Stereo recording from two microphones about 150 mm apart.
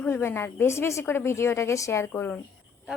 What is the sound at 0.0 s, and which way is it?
A woman's voice, 15° left (ahead or behind).